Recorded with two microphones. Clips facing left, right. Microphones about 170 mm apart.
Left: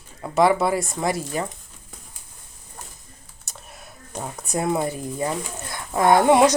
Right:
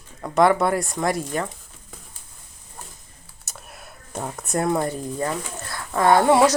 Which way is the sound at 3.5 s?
Centre (ahead or behind).